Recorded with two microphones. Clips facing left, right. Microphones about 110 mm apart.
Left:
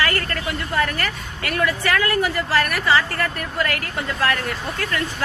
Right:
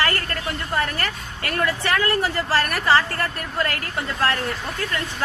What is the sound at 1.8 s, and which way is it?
A woman's voice, 25° right (ahead or behind).